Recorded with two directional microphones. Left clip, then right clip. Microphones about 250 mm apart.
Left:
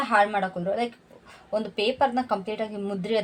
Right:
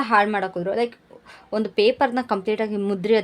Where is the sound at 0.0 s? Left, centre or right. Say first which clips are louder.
Right 3 dB; right.